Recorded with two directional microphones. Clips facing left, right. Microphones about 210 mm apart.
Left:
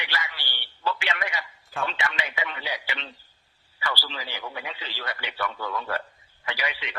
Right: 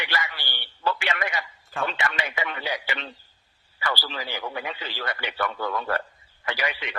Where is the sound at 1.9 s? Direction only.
50° right (ahead or behind).